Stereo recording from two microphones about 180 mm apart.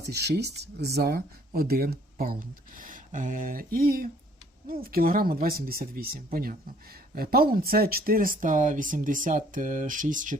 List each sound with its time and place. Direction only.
0.1 s speech: 65° right (ahead or behind); by 10.3 s 45° right (ahead or behind)